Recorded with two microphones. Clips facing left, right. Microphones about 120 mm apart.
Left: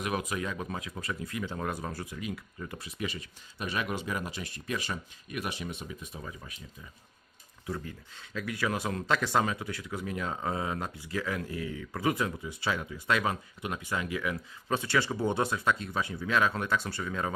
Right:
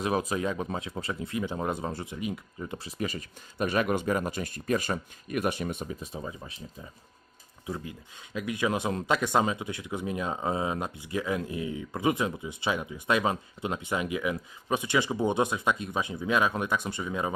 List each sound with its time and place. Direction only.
0.0 s speech: 30° right (ahead or behind)
3.1 s speech: 45° right (ahead or behind)
6.0 s speech: 30° right (ahead or behind)
7.7 s speech: 15° right (ahead or behind)